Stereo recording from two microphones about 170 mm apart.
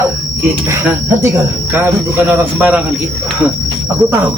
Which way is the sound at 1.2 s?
10° right (ahead or behind).